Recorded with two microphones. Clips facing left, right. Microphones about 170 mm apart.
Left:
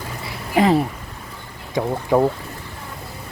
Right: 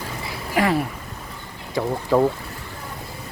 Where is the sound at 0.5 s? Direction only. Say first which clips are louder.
Left 4 dB; 20° left (ahead or behind).